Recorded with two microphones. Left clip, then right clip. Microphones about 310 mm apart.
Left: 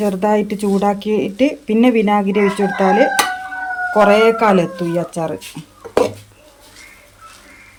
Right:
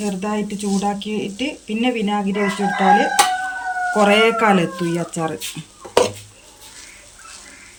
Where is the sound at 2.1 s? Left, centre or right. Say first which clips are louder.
Left 6 dB; left.